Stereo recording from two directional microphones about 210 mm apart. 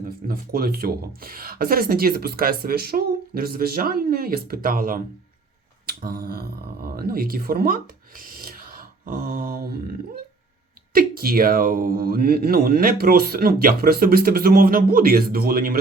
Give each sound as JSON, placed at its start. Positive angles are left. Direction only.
{"t": 0.0, "sound": "speech", "side_deg": -45}
{"t": 5.8, "sound": "a sound", "side_deg": -45}
{"t": 6.8, "sound": "speech", "side_deg": -45}
{"t": 10.9, "sound": "speech", "side_deg": -45}